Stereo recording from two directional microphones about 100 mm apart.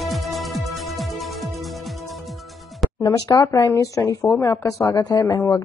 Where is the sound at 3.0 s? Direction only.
35° left (ahead or behind).